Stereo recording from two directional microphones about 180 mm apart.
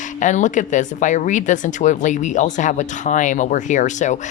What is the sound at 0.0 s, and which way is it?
Speech, 45° left (ahead or behind).